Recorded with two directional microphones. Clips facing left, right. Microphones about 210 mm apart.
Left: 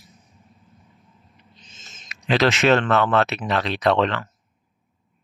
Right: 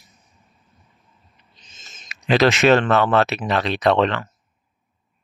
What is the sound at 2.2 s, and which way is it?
Speech, 15° right (ahead or behind).